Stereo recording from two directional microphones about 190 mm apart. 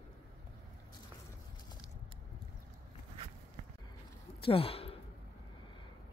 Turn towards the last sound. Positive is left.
turn(degrees=30)  # may be behind; listen again after turning